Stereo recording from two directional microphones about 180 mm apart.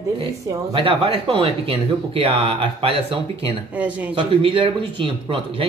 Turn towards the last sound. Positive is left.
turn(degrees=-30)  # may be behind; listen again after turning